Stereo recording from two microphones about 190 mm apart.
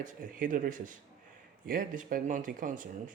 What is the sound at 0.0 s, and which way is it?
Speech, 45° right (ahead or behind).